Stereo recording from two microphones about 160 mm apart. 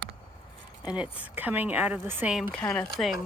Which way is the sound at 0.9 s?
10° right (ahead or behind).